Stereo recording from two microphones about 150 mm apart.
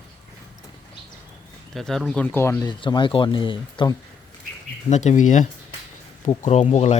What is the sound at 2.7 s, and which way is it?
Speech, 30° left (ahead or behind).